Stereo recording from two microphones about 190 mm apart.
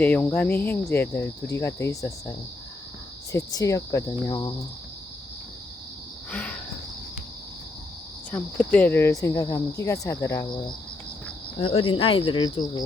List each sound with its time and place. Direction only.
0.0 s speech: 10° left (ahead or behind)
3.3 s speech: 15° left (ahead or behind)
6.3 s cricket: 10° left (ahead or behind)
8.3 s speech: 10° left (ahead or behind)
11.6 s speech: 30° left (ahead or behind)